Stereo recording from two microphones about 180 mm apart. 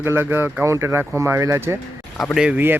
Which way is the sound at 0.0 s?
10° right (ahead or behind).